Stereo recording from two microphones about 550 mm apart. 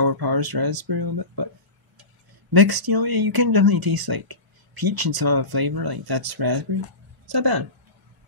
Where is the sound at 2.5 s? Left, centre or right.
Right.